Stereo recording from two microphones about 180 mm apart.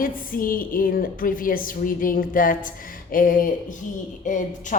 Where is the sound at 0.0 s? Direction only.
50° left (ahead or behind).